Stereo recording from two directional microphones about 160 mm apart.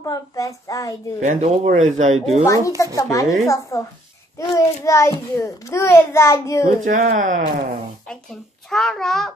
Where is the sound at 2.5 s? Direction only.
20° left (ahead or behind).